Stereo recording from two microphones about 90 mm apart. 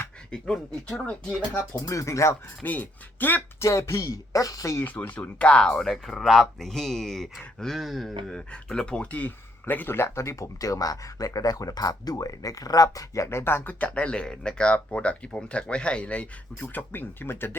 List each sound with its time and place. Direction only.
0.3 s speech: 5° left (ahead or behind)
1.9 s speech: 35° left (ahead or behind)
2.6 s speech: 20° left (ahead or behind)
3.6 s speech: 35° left (ahead or behind)
4.8 s speech: 20° left (ahead or behind)